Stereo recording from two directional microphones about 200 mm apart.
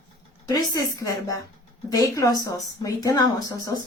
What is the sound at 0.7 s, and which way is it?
A woman's voice, 15° left (ahead or behind).